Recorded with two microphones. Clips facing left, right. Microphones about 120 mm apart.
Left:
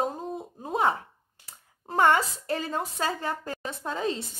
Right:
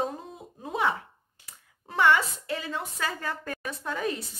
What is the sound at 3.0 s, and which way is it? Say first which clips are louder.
A woman's voice: left 3 dB; 25° left (ahead or behind).